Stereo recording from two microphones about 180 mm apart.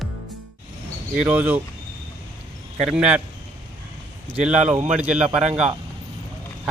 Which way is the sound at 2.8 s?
5° right (ahead or behind).